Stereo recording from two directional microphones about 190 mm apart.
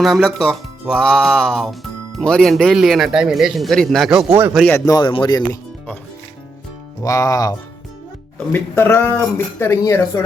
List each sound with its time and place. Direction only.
0.0 s a man's voice: centre (ahead or behind)
4.6 s speech: 15° left (ahead or behind)
5.4 s music: 5° left (ahead or behind)
7.0 s speech: 15° left (ahead or behind)
8.5 s speech: 10° left (ahead or behind)